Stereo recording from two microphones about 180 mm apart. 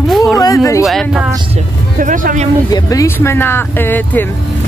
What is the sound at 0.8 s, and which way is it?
Speech, centre (ahead or behind).